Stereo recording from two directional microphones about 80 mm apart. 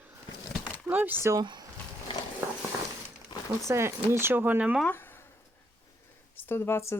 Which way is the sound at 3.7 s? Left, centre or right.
Right.